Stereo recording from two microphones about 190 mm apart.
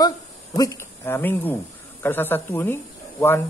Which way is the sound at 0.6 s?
15° left (ahead or behind).